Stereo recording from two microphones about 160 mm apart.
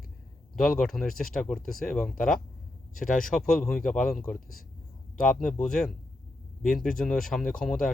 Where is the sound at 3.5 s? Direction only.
5° left (ahead or behind).